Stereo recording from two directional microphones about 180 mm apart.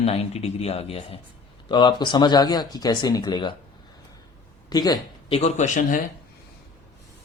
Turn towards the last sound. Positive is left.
turn(degrees=40)  # may be behind; listen again after turning